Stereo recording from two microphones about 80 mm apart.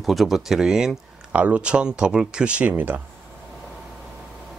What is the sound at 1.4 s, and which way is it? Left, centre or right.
Speech, centre.